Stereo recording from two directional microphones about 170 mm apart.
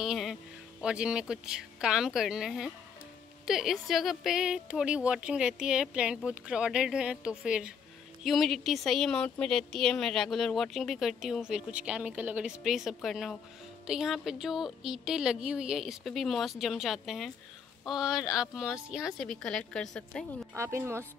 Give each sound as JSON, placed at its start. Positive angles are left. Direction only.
{"t": 0.0, "sound": "speech", "side_deg": 0}
{"t": 20.5, "sound": "speech", "side_deg": -15}